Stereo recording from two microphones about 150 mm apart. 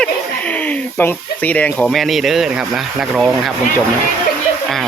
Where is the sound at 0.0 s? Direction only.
10° left (ahead or behind).